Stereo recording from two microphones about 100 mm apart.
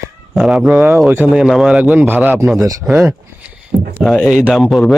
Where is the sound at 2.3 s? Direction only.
Centre (ahead or behind).